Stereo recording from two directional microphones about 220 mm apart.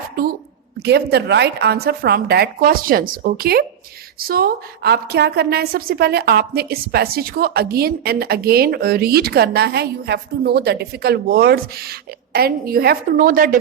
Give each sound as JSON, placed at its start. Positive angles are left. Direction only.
{"t": 0.8, "sound": "a woman's voice", "side_deg": -50}